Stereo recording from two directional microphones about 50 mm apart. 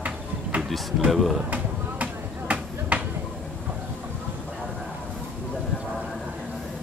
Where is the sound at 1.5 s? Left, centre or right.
Right.